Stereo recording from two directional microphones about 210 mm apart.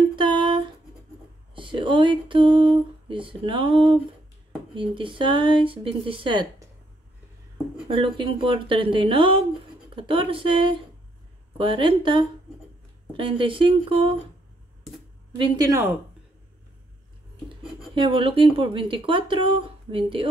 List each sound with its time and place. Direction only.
0.1 s a sound: 20° right (ahead or behind)
1.5 s speech: 25° right (ahead or behind)
7.9 s speech: 25° right (ahead or behind)
15.3 s speech: 20° right (ahead or behind)
17.9 s speech: 25° right (ahead or behind)